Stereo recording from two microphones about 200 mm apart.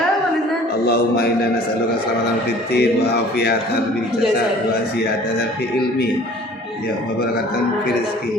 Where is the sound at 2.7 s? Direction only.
55° left (ahead or behind).